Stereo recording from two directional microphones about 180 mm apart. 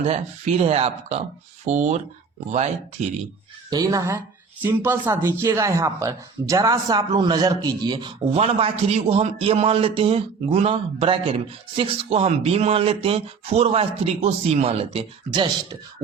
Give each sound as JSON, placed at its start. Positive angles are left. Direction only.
{"t": 0.0, "sound": "speech", "side_deg": -35}
{"t": 3.7, "sound": "speech", "side_deg": -20}